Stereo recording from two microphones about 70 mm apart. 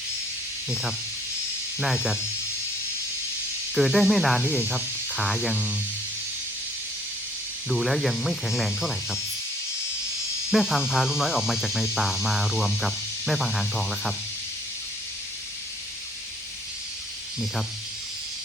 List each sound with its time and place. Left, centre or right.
0.7 s speech: centre
3.8 s speech: centre
7.7 s speech: centre
10.5 s speech: centre